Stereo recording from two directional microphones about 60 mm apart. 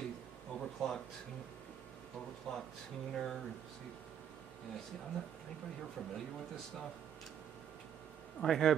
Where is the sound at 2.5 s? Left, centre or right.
Centre.